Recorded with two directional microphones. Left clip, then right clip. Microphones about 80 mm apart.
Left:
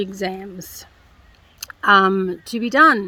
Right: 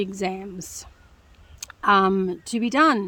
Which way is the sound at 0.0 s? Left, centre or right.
Right.